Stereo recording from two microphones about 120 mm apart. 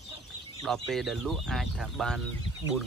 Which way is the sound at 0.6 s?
Centre (ahead or behind).